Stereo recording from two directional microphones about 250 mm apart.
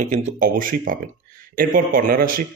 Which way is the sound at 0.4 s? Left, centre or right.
Right.